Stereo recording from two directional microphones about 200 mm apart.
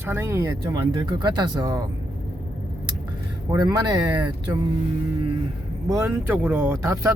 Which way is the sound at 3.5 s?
20° right (ahead or behind).